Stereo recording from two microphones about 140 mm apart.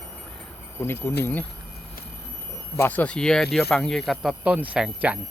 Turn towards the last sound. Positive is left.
turn(degrees=-5)  # may be behind; listen again after turning